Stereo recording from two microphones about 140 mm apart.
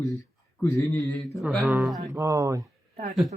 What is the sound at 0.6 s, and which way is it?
Mantra, 20° left (ahead or behind).